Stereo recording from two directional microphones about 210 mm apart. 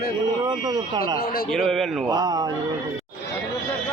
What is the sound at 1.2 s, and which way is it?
Speech, 45° left (ahead or behind).